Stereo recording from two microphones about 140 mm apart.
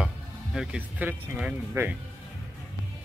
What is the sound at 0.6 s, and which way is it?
Speech, 10° right (ahead or behind).